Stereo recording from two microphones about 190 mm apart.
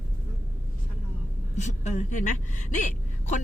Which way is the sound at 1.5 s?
40° left (ahead or behind).